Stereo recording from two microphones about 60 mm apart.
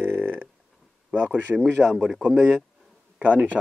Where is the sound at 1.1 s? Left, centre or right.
Right.